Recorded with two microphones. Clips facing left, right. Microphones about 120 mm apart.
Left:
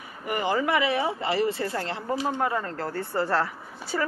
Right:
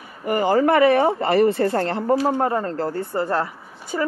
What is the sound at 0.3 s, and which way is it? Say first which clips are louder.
Speech: right 7 dB; 40° right (ahead or behind).